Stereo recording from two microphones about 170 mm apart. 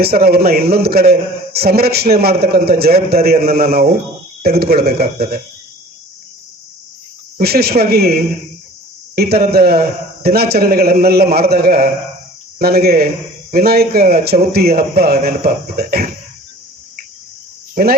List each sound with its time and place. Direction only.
0.0 s a man's voice: 65° right (ahead or behind)
7.3 s a man's voice: 70° right (ahead or behind)